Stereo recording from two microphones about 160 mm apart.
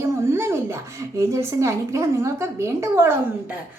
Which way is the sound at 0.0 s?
15° right (ahead or behind).